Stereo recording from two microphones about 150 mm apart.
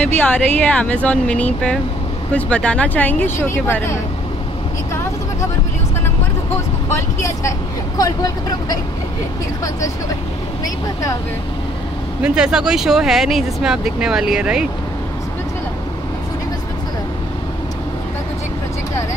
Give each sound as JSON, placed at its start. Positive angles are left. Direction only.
{"t": 0.2, "sound": "speech", "side_deg": 10}
{"t": 6.9, "sound": "speech", "side_deg": 20}
{"t": 10.6, "sound": "speech", "side_deg": 20}
{"t": 12.2, "sound": "speech", "side_deg": -5}